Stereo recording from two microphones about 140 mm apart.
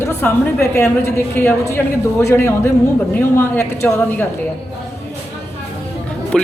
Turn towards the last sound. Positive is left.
turn(degrees=5)  # may be behind; listen again after turning